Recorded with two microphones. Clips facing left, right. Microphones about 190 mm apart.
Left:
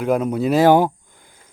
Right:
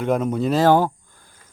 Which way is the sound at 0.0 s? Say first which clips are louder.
Left 2 dB; 5° left (ahead or behind).